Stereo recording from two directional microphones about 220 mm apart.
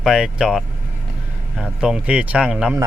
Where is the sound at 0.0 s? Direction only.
Centre (ahead or behind).